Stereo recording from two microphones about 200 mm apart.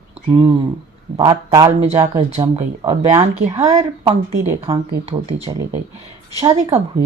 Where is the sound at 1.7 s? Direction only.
30° right (ahead or behind).